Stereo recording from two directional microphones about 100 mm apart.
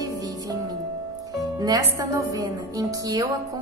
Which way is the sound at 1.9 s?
35° right (ahead or behind).